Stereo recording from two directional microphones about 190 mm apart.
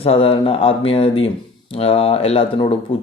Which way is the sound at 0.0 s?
30° left (ahead or behind).